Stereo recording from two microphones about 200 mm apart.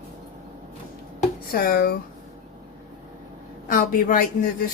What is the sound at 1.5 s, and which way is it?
Speech, 50° left (ahead or behind).